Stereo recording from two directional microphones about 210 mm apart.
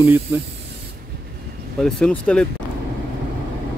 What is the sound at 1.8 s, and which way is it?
Speech, 5° left (ahead or behind).